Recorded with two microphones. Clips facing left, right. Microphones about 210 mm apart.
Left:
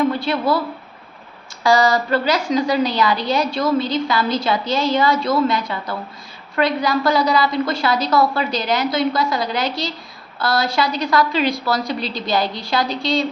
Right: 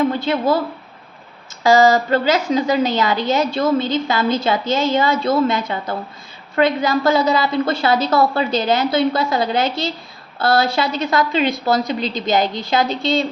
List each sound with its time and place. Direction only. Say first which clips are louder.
0.2 s a woman's voice: right 2 dB; 25° right (ahead or behind)
1.6 s a woman's voice: right 3 dB; 20° right (ahead or behind)